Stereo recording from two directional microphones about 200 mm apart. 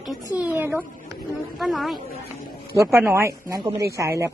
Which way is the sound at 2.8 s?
10° right (ahead or behind).